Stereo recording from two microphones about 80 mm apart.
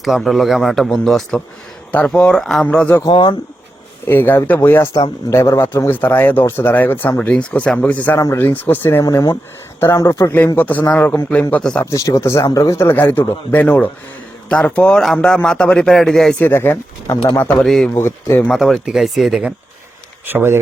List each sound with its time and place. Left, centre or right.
0.0 s a man's voice: centre
1.9 s speech: centre
2.6 s speech: centre
3.1 s speech: left
4.0 s a man's voice: left; by 11.9 s centre
11.9 s a man's voice: left; by 16.4 s centre
16.4 s a man's voice: left
17.2 s a man's voice: left
17.9 s speech: left
18.5 s a man's voice: centre
20.2 s speech: right